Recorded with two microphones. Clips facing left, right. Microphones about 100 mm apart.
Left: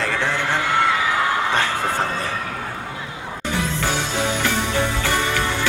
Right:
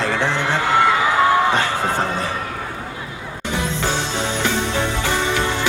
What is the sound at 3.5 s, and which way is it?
Music, 20° right (ahead or behind).